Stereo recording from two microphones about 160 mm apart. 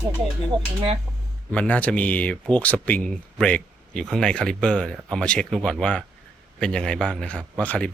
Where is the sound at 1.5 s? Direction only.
10° left (ahead or behind).